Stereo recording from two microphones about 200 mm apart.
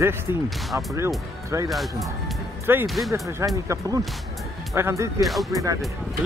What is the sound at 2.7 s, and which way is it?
Speech, 10° right (ahead or behind).